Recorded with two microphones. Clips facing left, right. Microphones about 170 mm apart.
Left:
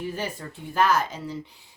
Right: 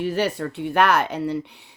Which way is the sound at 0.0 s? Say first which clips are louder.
Right 8 dB; 75° right (ahead or behind).